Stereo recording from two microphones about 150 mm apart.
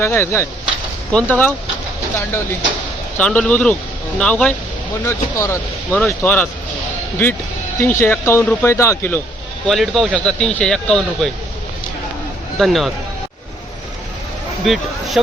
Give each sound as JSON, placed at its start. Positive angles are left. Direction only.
{"t": 0.0, "sound": "speech", "side_deg": 15}
{"t": 3.2, "sound": "speech", "side_deg": 5}
{"t": 5.0, "sound": "speech", "side_deg": 20}
{"t": 7.8, "sound": "speech", "side_deg": 15}
{"t": 9.6, "sound": "speech", "side_deg": 0}
{"t": 12.5, "sound": "speech", "side_deg": 0}
{"t": 14.6, "sound": "speech", "side_deg": 0}